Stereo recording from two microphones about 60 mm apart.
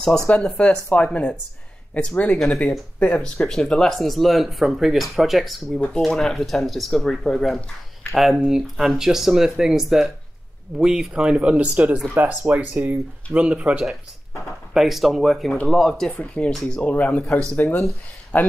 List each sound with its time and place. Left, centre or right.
0.3 s speech: centre
14.7 s speech: centre
16.1 s speech: left